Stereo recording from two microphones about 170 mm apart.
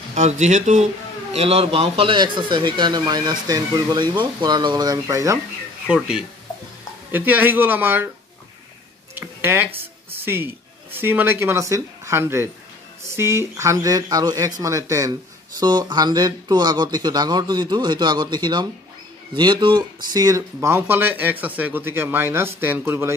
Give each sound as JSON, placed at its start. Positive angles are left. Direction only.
{"t": 0.1, "sound": "a man's voice", "side_deg": -45}
{"t": 5.9, "sound": "speech", "side_deg": -5}
{"t": 9.1, "sound": "a man's voice", "side_deg": -10}